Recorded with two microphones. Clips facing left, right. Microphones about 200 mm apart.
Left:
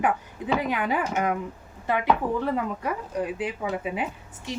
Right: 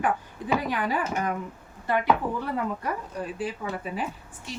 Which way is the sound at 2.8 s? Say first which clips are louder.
Left 3 dB; 20° left (ahead or behind).